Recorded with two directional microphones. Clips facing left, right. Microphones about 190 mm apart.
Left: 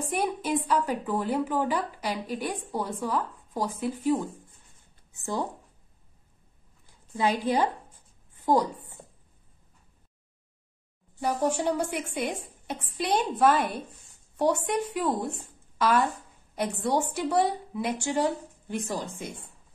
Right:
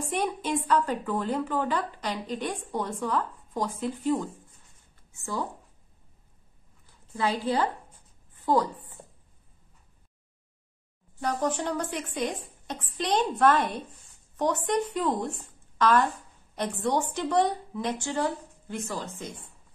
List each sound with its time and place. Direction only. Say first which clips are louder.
0.1 s a woman's voice: left 1 dB; 5° left (ahead or behind)
5.1 s speech: left 2 dB; 20° left (ahead or behind)
7.2 s a woman's voice: left 2 dB; 15° left (ahead or behind)
8.5 s a woman's voice: left 1 dB; 25° left (ahead or behind)
11.1 s a woman's voice: left 2 dB; 10° left (ahead or behind)